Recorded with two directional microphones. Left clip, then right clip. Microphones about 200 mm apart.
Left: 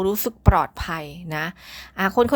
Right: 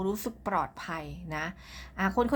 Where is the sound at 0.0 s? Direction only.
35° left (ahead or behind).